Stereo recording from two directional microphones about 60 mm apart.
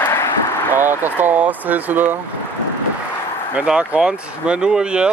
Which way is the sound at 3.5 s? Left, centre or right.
Centre.